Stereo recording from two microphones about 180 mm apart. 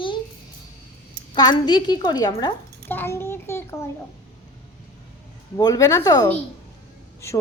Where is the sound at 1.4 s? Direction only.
25° left (ahead or behind).